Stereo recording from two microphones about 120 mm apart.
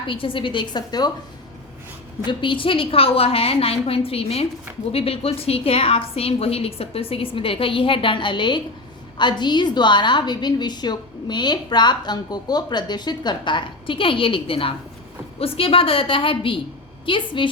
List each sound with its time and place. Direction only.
0.1 s a woman's voice: 45° left (ahead or behind)
2.2 s a woman's voice: 45° left (ahead or behind)